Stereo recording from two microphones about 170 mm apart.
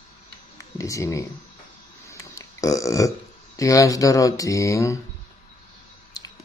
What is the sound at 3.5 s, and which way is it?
Speech, 20° left (ahead or behind).